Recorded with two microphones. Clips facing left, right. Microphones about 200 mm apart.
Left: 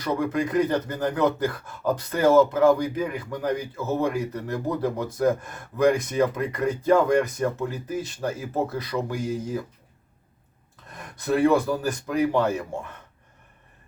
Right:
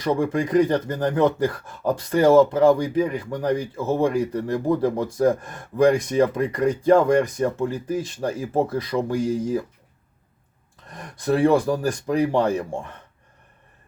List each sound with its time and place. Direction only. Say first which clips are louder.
0.0 s speech: right 3 dB; 30° right (ahead or behind)
11.4 s speech: right 2 dB; 30° right (ahead or behind)